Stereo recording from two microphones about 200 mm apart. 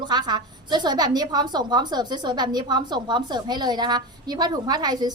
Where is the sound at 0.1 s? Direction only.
20° right (ahead or behind).